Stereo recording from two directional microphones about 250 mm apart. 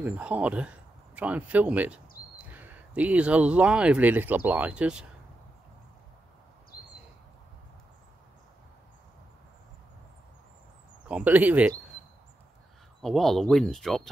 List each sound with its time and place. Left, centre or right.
0.0 s speech: centre
11.1 s speech: centre
13.0 s speech: centre